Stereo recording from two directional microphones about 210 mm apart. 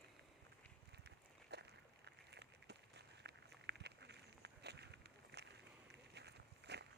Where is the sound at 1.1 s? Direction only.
55° right (ahead or behind).